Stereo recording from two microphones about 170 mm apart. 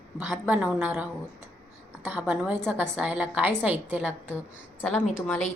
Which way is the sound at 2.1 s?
10° right (ahead or behind).